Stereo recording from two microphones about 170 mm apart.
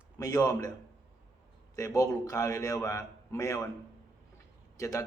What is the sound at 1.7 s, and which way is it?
Speech, 20° left (ahead or behind).